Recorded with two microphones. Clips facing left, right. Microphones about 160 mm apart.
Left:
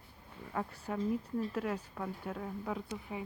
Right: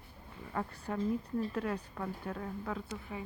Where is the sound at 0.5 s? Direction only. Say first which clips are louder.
Even; 5° left (ahead or behind).